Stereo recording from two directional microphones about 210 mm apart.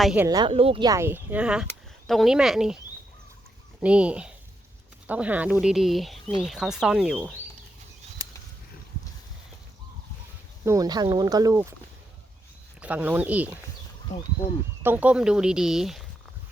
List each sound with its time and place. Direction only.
0.0 s speech: 5° right (ahead or behind)
0.3 s speech: 20° right (ahead or behind); by 2.7 s centre (ahead or behind)
3.8 s speech: 5° right (ahead or behind)
10.7 s speech: 20° right (ahead or behind)
12.8 s speech: 5° right (ahead or behind)
14.1 s speech: 35° left (ahead or behind)
14.8 s speech: 5° right (ahead or behind)